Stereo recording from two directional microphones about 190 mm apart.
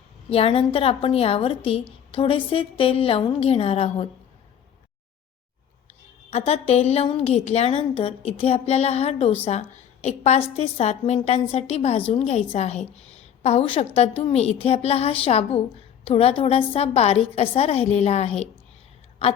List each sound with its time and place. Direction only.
0.3 s a woman's voice: 30° left (ahead or behind)
6.3 s a woman's voice: 35° left (ahead or behind)